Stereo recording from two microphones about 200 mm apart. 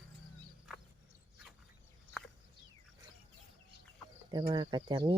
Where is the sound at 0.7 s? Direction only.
5° right (ahead or behind).